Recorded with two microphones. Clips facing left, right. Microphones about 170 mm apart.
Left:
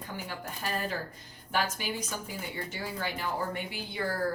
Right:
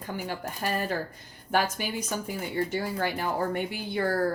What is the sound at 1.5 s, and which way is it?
Speech, 50° right (ahead or behind).